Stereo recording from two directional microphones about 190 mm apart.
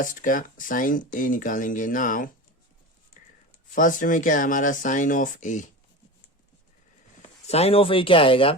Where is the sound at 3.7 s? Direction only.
45° left (ahead or behind).